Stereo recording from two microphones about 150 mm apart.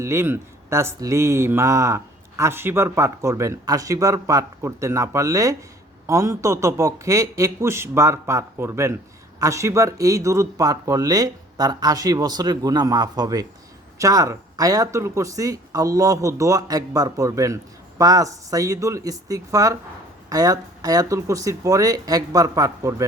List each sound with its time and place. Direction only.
0.0 s speech: 20° right (ahead or behind)